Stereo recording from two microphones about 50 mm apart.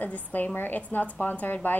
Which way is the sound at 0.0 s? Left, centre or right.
Left.